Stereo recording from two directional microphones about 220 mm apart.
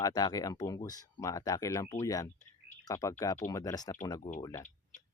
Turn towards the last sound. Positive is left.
turn(degrees=15)  # may be behind; listen again after turning